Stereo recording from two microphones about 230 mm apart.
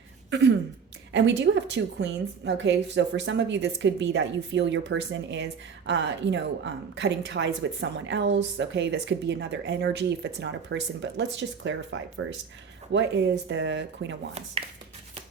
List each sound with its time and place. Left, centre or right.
0.3 s a woman's voice: right
14.6 s speech: right